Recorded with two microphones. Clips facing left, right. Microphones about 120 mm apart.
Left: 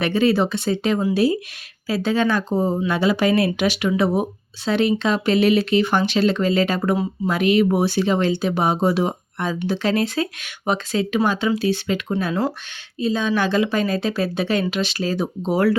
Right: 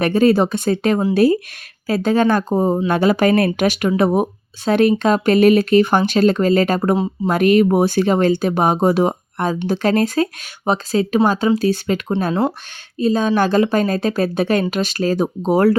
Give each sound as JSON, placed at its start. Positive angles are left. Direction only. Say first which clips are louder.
{"t": 0.0, "sound": "speech", "louder": "right 4 dB", "side_deg": -45}
{"t": 12.3, "sound": "speech", "louder": "right 4 dB", "side_deg": -25}
{"t": 13.0, "sound": "speech", "louder": "right 5 dB", "side_deg": -45}